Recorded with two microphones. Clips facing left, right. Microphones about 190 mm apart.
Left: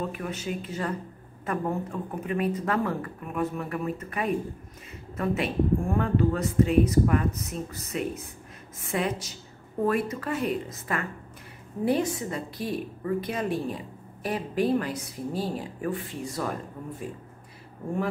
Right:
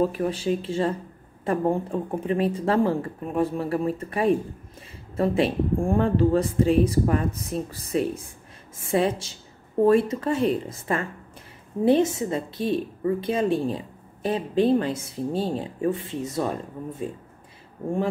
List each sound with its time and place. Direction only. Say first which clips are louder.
0.0 s a woman's voice: right 8 dB; 35° right (ahead or behind)